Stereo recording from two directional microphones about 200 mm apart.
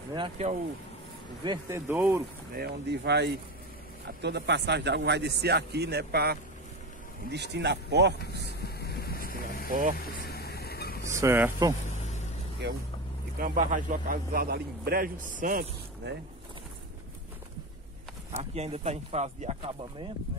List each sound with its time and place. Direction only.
0.1 s speech: 30° right (ahead or behind)
1.4 s speech: 20° right (ahead or behind)
2.5 s a man's voice: 55° right (ahead or behind)
8.5 s vehicle: 50° left (ahead or behind)
11.1 s speech: 10° right (ahead or behind)
13.4 s a man's voice: 40° right (ahead or behind)
16.0 s a man's voice: 60° right (ahead or behind)
18.3 s speech: 30° right (ahead or behind)